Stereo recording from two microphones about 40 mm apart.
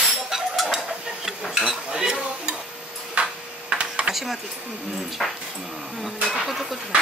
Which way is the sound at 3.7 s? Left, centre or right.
Right.